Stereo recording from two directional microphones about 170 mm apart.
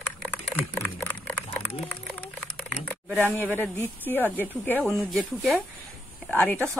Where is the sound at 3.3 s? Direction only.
10° left (ahead or behind).